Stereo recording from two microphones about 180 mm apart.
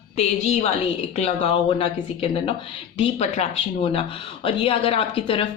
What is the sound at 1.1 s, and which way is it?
Speech, 35° left (ahead or behind).